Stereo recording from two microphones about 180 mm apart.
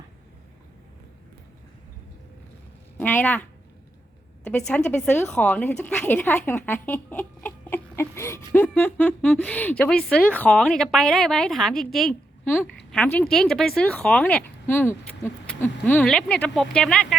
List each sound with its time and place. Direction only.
3.0 s speech: 10° left (ahead or behind)
4.9 s a woman's voice: 10° left (ahead or behind)